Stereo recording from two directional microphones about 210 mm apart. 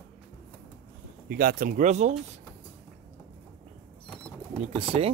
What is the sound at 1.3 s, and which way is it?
Speech, 45° right (ahead or behind).